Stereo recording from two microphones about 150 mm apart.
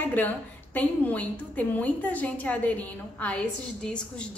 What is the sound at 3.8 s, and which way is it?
Speech, 5° left (ahead or behind).